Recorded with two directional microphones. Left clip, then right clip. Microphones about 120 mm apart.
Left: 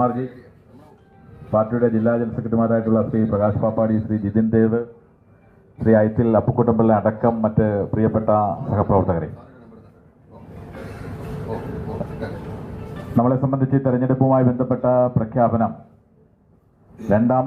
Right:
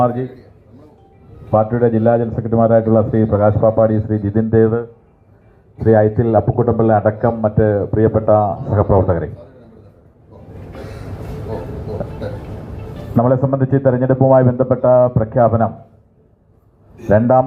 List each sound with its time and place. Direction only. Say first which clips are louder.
1.5 s a man's voice: right 4 dB; 65° right (ahead or behind); by 6.3 s 25° right (ahead or behind)
6.3 s speech: right 2 dB; 5° right (ahead or behind)
7.2 s speech: right 4 dB; 20° right (ahead or behind)
13.1 s a man's voice: right 5 dB; 30° right (ahead or behind)
17.1 s a man's voice: right 6 dB; 35° right (ahead or behind)